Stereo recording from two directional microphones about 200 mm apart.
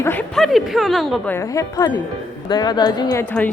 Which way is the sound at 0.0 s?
10° left (ahead or behind).